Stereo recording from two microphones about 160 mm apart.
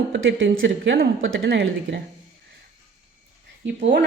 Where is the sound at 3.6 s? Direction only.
90° right.